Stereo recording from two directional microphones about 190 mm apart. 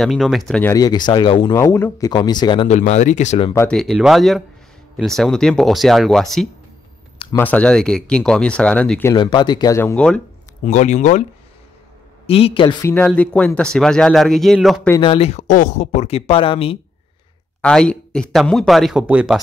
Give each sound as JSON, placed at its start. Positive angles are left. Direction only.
{"t": 0.0, "sound": "speech", "side_deg": 0}
{"t": 0.7, "sound": "speech", "side_deg": 20}
{"t": 1.6, "sound": "speech", "side_deg": 15}
{"t": 2.8, "sound": "speech", "side_deg": 40}
{"t": 3.5, "sound": "speech", "side_deg": 5}
{"t": 9.1, "sound": "speech", "side_deg": 20}
{"t": 10.6, "sound": "speech", "side_deg": 40}
{"t": 12.3, "sound": "speech", "side_deg": 30}
{"t": 12.8, "sound": "speech", "side_deg": 10}
{"t": 15.0, "sound": "speech", "side_deg": 30}
{"t": 17.6, "sound": "speech", "side_deg": 5}